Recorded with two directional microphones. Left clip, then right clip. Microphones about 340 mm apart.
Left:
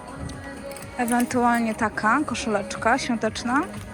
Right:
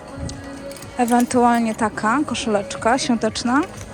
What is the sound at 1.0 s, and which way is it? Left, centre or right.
Speech, centre.